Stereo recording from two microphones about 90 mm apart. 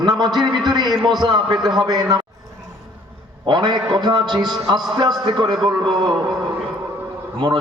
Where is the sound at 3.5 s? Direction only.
55° right (ahead or behind).